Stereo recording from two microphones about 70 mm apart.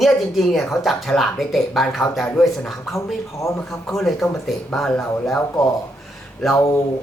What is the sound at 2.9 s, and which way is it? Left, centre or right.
Speech, left.